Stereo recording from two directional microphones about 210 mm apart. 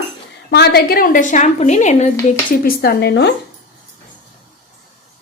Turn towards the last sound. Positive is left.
turn(degrees=50)  # may be behind; listen again after turning